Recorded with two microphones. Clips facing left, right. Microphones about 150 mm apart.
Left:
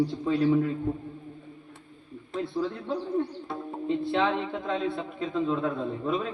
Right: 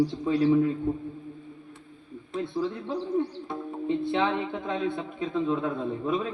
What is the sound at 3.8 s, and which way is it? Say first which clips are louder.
Speech: right 1 dB; 20° right (ahead or behind).